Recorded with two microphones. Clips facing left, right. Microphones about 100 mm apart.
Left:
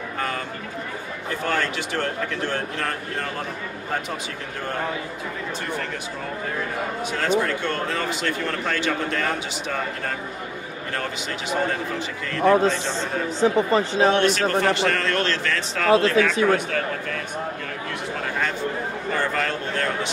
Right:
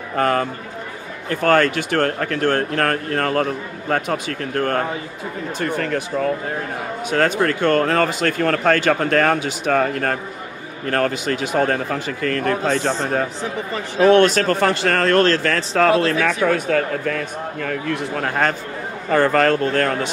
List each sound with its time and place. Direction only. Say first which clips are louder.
0.2 s speech: right 11 dB; 60° right (ahead or behind)
7.1 s speech: right 5 dB; 55° right (ahead or behind)
12.6 s speech: right 3 dB; 45° right (ahead or behind)
13.4 s speech: left 7 dB; 30° left (ahead or behind)
14.1 s speech: right 5 dB; 45° right (ahead or behind)
17.6 s speech: right 7 dB; 55° right (ahead or behind)